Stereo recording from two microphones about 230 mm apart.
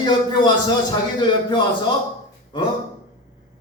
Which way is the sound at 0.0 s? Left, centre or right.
Centre.